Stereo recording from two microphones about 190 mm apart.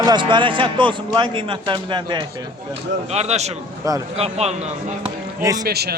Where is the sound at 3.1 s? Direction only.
35° right (ahead or behind).